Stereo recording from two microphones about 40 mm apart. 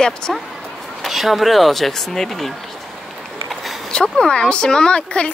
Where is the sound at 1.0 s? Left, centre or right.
Centre.